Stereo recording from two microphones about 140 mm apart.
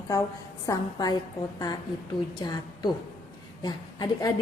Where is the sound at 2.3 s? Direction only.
30° left (ahead or behind).